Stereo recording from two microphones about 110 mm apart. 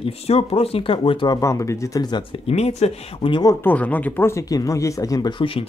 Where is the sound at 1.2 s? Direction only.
30° left (ahead or behind).